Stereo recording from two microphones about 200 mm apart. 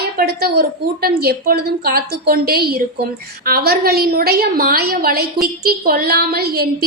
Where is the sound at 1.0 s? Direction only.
50° right (ahead or behind).